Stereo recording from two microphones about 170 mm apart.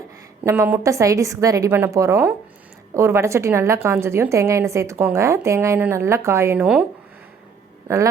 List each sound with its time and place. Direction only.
0.4 s a woman's voice: 15° right (ahead or behind)